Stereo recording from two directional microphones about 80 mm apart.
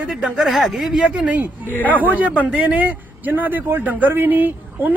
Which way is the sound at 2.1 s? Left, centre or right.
Centre.